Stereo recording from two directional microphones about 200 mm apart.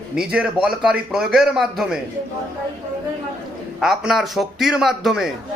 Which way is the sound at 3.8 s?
Centre (ahead or behind).